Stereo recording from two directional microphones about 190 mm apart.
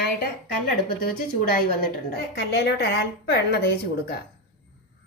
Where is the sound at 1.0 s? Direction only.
50° left (ahead or behind).